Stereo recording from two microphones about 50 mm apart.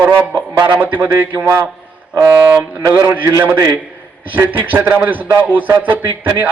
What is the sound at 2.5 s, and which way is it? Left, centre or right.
Speech, right.